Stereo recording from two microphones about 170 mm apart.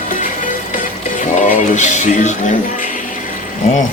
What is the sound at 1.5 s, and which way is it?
Music, 45° left (ahead or behind).